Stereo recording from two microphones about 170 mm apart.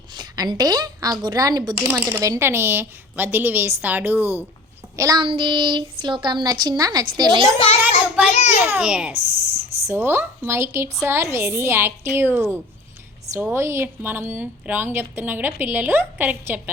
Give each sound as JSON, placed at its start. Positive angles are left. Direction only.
{"t": 0.1, "sound": "a sound", "side_deg": -25}
{"t": 1.2, "sound": "speech", "side_deg": -20}
{"t": 4.9, "sound": "speech", "side_deg": -20}
{"t": 7.8, "sound": "child singing", "side_deg": -10}
{"t": 8.3, "sound": "a child's voice", "side_deg": 40}
{"t": 8.6, "sound": "speech", "side_deg": -10}